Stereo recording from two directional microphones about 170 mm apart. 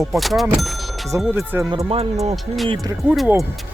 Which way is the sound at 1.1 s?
15° right (ahead or behind).